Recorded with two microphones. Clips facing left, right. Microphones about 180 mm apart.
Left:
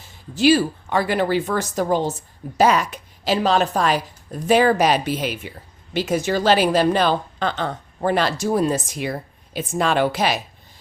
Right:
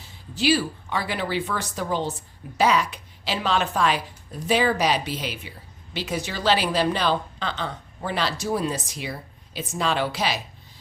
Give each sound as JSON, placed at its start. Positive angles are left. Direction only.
{"t": 0.3, "sound": "a woman's voice", "side_deg": 45}